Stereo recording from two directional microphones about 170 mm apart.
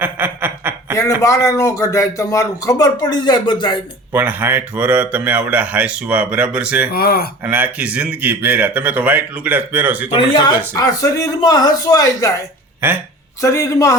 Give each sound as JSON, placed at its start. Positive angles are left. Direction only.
{"t": 0.0, "sound": "snicker", "side_deg": -10}
{"t": 1.2, "sound": "speech", "side_deg": 20}
{"t": 4.1, "sound": "speech", "side_deg": -10}
{"t": 6.9, "sound": "speech", "side_deg": 65}
{"t": 7.4, "sound": "speech", "side_deg": -10}
{"t": 10.8, "sound": "speech", "side_deg": 20}
{"t": 12.8, "sound": "speech", "side_deg": -10}
{"t": 13.4, "sound": "speech", "side_deg": 20}